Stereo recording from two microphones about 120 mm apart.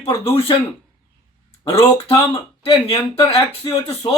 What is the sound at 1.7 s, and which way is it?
Speech, 50° left (ahead or behind).